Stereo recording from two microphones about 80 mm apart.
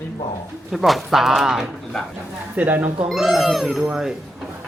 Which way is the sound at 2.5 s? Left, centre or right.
Right.